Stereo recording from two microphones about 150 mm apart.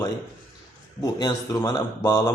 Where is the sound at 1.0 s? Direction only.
25° left (ahead or behind).